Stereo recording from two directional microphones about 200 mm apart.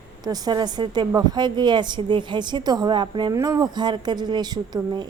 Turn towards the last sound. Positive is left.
turn(degrees=-20)  # may be behind; listen again after turning